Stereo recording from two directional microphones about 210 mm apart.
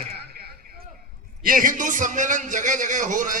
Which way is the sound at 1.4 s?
40° right (ahead or behind).